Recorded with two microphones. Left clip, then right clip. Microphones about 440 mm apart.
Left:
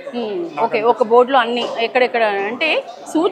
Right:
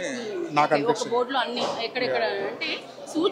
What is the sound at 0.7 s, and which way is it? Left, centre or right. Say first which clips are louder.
A woman's voice: left 10 dB; left.